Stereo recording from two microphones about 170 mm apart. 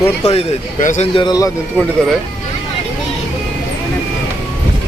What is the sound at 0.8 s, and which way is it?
Speech, 50° left (ahead or behind).